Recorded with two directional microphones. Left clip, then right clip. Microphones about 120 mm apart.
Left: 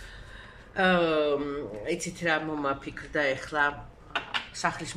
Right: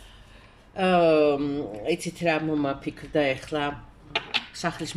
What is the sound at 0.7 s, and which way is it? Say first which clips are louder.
Speech: right 4 dB; 15° right (ahead or behind).